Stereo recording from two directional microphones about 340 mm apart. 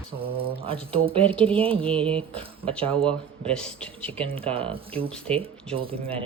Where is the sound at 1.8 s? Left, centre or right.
Centre.